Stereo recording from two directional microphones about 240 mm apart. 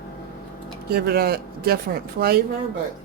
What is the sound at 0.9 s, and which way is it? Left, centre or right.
Speech, right.